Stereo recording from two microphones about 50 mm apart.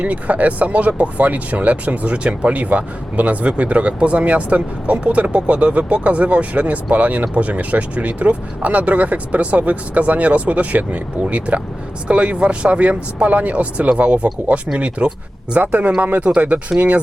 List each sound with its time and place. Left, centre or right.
0.0 s speech: right